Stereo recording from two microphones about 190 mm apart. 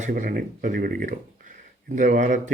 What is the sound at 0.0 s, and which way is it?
Speech, 45° right (ahead or behind).